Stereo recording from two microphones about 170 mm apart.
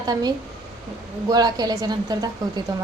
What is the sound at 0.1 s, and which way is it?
Speech, 25° right (ahead or behind).